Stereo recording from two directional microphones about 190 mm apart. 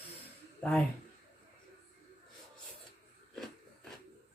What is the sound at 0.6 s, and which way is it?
Speech, 5° left (ahead or behind).